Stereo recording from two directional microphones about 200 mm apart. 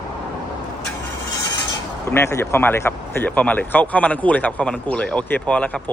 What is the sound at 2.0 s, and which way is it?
Speech, 15° left (ahead or behind).